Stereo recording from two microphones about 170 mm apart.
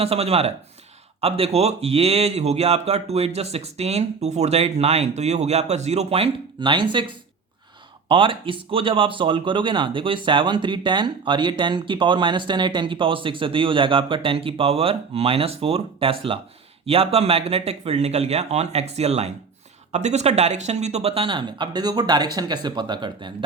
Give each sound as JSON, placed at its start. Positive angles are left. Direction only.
{"t": 0.0, "sound": "speech", "side_deg": -35}